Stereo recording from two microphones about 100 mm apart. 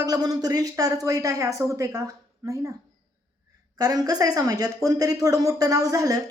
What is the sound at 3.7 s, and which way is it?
A woman's voice, 40° right (ahead or behind).